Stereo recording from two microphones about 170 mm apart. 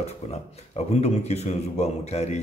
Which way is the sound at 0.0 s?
40° left (ahead or behind).